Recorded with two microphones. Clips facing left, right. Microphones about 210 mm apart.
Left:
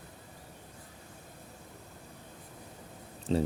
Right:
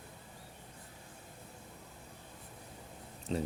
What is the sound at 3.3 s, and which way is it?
Speech, 30° left (ahead or behind).